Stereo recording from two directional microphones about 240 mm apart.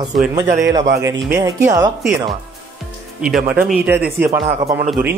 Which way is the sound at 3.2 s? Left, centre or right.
Centre.